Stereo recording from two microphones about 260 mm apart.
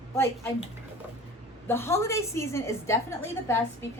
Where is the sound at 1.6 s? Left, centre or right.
Centre.